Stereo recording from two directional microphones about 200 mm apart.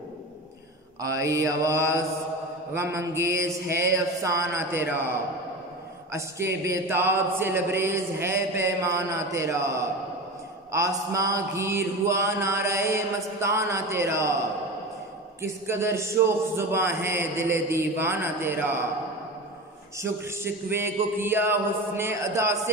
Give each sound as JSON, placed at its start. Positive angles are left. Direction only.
{"t": 1.0, "sound": "mantra", "side_deg": -15}
{"t": 6.1, "sound": "mantra", "side_deg": -15}
{"t": 10.7, "sound": "mantra", "side_deg": -15}
{"t": 15.4, "sound": "mantra", "side_deg": -10}
{"t": 20.0, "sound": "mantra", "side_deg": -10}